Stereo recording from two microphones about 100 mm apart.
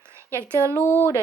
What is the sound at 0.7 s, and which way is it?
Speech, 20° left (ahead or behind).